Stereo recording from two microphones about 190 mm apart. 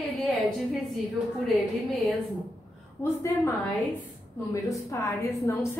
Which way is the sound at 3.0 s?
15° left (ahead or behind).